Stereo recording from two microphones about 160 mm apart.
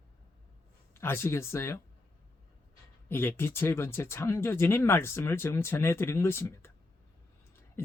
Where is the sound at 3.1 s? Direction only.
15° left (ahead or behind).